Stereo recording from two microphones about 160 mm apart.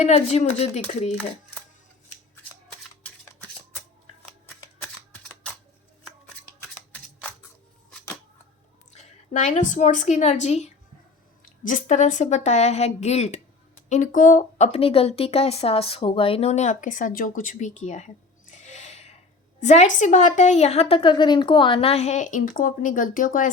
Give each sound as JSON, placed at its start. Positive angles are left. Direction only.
{"t": 0.0, "sound": "a woman's voice", "side_deg": 45}
{"t": 9.0, "sound": "a woman's voice", "side_deg": 50}